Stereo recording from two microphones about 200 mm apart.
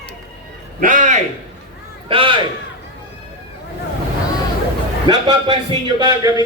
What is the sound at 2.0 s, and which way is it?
Speech, 25° right (ahead or behind).